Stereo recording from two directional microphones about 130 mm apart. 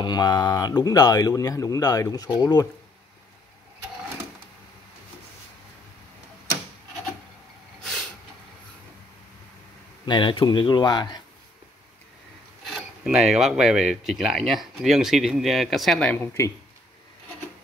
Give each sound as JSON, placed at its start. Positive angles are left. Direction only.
{"t": 0.0, "sound": "speech", "side_deg": 30}
{"t": 10.0, "sound": "speech", "side_deg": 35}
{"t": 12.6, "sound": "speech", "side_deg": 0}